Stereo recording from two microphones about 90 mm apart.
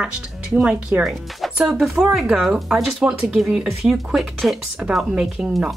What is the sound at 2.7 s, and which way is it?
Speech, centre (ahead or behind).